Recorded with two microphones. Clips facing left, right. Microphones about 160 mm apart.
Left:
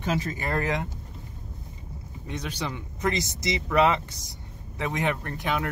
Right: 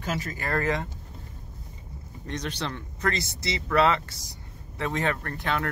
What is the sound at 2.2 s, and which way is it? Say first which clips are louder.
Speech: right 1 dB; 10° left (ahead or behind).